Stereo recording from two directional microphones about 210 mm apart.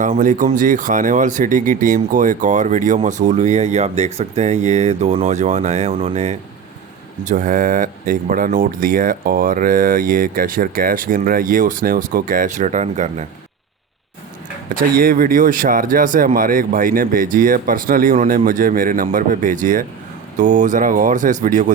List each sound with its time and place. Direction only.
0.0 s speech: 40° right (ahead or behind)
14.9 s speech: 45° right (ahead or behind)